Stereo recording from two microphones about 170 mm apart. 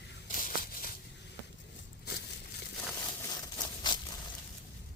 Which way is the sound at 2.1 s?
65° left (ahead or behind).